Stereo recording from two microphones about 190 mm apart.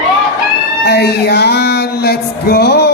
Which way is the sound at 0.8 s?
60° left (ahead or behind).